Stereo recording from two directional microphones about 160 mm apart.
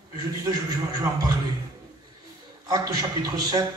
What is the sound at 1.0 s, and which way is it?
Speech, 25° right (ahead or behind).